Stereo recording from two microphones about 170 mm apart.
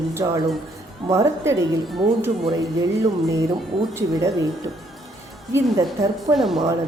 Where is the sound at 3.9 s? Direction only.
15° right (ahead or behind).